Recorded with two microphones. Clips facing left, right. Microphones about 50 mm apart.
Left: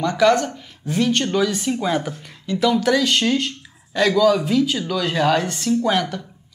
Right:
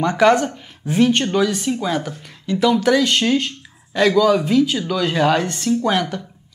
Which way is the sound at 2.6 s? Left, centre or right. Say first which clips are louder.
Right 2 dB; centre.